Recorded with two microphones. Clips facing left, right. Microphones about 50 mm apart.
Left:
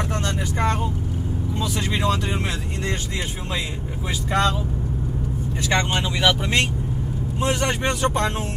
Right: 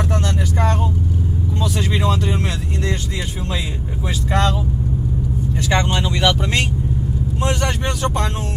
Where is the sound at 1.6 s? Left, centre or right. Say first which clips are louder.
Right 2 dB; centre.